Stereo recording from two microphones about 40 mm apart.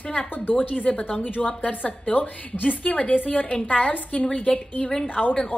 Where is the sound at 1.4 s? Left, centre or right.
Left.